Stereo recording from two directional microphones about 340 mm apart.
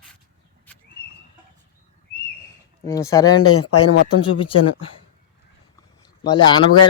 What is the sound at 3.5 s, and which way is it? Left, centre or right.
Speech, left.